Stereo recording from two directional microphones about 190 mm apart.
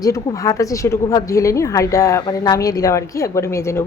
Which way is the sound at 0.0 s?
15° left (ahead or behind).